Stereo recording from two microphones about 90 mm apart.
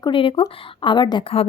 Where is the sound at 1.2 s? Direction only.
90° left.